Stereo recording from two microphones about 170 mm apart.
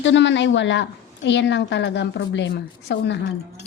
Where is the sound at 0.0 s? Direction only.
90° left.